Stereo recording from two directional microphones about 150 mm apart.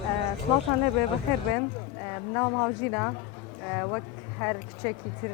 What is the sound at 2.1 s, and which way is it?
Speech, 15° left (ahead or behind).